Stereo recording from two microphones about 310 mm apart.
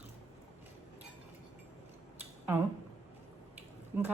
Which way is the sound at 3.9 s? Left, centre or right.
Centre.